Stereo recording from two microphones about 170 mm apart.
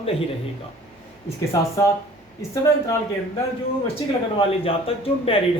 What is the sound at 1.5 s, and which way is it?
Speech, 20° left (ahead or behind).